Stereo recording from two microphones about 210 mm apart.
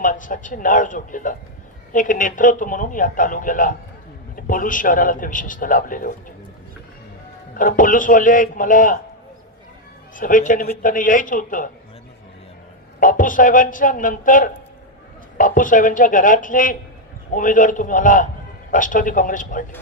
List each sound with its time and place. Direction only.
0.0 s a man's voice: 40° left (ahead or behind)
7.5 s a man's voice: 40° left (ahead or behind)
10.2 s a man's voice: 40° left (ahead or behind)
13.0 s a man's voice: 40° left (ahead or behind)